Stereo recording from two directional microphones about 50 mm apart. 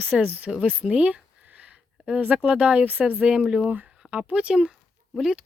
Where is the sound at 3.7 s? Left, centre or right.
Right.